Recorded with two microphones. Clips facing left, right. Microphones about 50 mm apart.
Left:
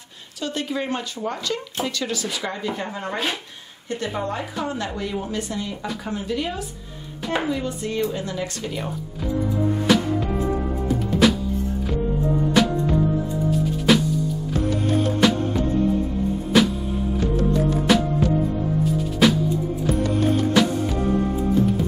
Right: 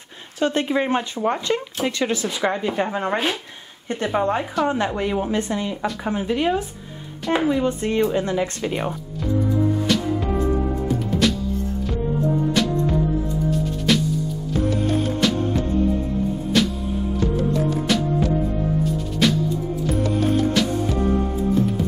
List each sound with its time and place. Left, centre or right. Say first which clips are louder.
0.4 s speech: right 6 dB; right
9.9 s music: left 6 dB; centre
11.2 s music: left 4 dB; centre
12.6 s music: left 6 dB; centre
13.9 s music: left 2 dB; centre
15.2 s music: left 4 dB; centre
16.5 s music: left 3 dB; centre
17.9 s music: left 4 dB; centre
19.2 s music: left 2 dB; centre